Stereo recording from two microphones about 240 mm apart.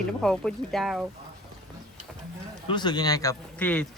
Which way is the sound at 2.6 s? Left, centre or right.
Centre.